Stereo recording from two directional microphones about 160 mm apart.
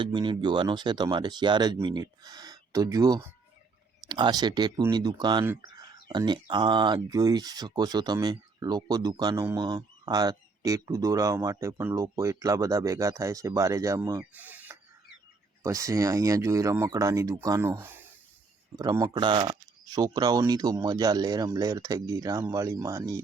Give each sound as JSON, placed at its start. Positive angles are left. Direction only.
{"t": 0.0, "sound": "speech", "side_deg": -30}
{"t": 14.3, "sound": "a sound", "side_deg": -10}
{"t": 15.6, "sound": "speech", "side_deg": -20}